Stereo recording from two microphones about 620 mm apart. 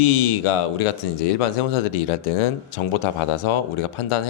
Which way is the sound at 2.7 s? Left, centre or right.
Left.